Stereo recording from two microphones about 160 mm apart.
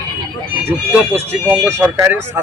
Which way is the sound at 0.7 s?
15° right (ahead or behind).